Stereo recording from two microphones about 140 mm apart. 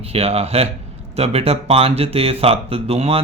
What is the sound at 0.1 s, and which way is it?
Speech, 45° right (ahead or behind).